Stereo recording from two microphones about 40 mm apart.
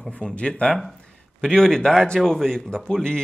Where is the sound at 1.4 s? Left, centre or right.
Centre.